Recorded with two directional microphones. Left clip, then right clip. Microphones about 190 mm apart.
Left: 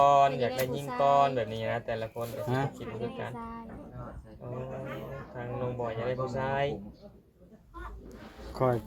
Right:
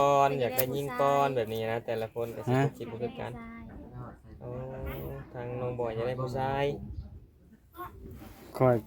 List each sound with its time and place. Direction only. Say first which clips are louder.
0.0 s speech: left 2 dB; 55° right (ahead or behind)
5.4 s speech: right 1 dB; 55° right (ahead or behind)
8.5 s speech: right 3 dB; 50° right (ahead or behind)